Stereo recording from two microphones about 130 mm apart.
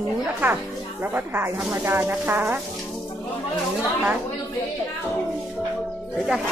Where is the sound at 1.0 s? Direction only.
15° right (ahead or behind).